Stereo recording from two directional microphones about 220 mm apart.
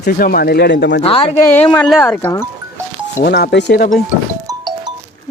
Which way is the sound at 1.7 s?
10° left (ahead or behind).